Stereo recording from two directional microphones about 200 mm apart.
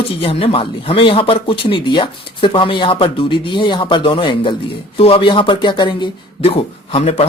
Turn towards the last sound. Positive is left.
turn(degrees=30)  # may be behind; listen again after turning